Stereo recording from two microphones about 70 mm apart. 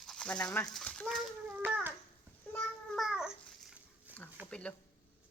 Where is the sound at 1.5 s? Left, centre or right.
Right.